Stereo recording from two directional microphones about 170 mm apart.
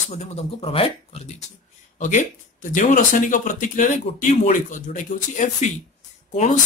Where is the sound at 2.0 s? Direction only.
50° left (ahead or behind).